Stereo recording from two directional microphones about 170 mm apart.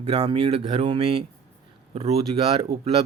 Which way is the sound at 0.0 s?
35° right (ahead or behind).